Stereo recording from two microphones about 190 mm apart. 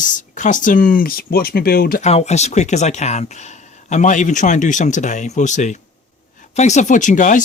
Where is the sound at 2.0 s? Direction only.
35° left (ahead or behind).